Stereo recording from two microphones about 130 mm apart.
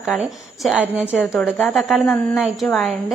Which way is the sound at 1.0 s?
15° left (ahead or behind).